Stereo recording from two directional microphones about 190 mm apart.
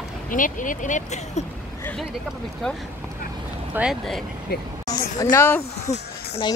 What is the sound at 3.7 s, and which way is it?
Speech, 5° right (ahead or behind).